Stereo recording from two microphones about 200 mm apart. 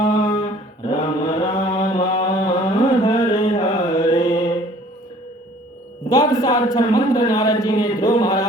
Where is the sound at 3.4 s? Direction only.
35° left (ahead or behind).